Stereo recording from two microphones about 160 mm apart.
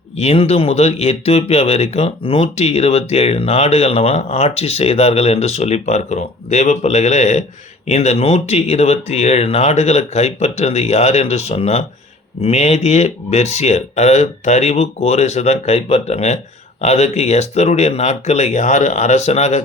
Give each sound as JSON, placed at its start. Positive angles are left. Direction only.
{"t": 0.2, "sound": "speech", "side_deg": 40}